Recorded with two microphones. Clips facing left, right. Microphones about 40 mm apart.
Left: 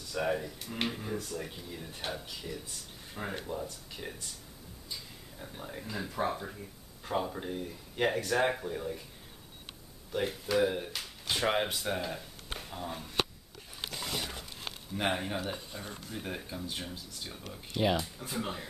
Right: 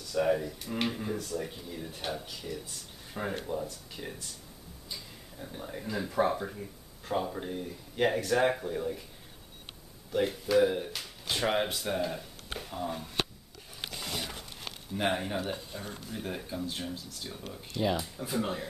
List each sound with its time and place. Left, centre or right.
0.1 s speech: centre
10.1 s speech: centre
13.8 s dog: centre
15.0 s speech: centre
17.8 s speech: centre
18.1 s speech: centre